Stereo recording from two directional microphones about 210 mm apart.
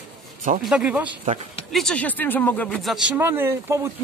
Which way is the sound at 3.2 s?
10° right (ahead or behind).